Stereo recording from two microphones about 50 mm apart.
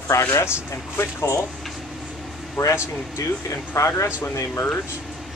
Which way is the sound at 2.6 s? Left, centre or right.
Left.